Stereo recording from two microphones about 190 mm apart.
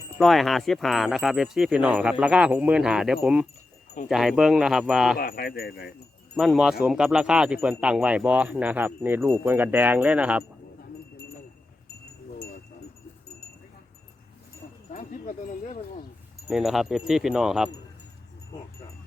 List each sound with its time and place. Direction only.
0.2 s speech: centre (ahead or behind)
5.1 s speech: 50° left (ahead or behind)
6.3 s speech: centre (ahead or behind)
14.9 s speech: 45° left (ahead or behind)
16.5 s speech: centre (ahead or behind)